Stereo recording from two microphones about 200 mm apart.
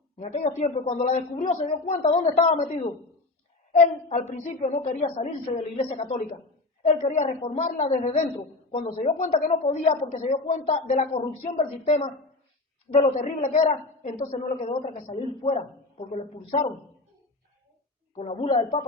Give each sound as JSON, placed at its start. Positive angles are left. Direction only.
{"t": 0.2, "sound": "a woman's voice", "side_deg": 35}
{"t": 3.7, "sound": "a woman's voice", "side_deg": 35}
{"t": 13.1, "sound": "a woman's voice", "side_deg": 40}
{"t": 18.2, "sound": "a woman's voice", "side_deg": 30}